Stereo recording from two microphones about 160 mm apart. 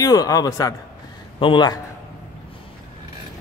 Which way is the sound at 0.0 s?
20° left (ahead or behind).